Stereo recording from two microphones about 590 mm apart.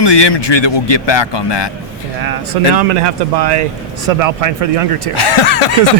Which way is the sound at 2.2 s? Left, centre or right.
Right.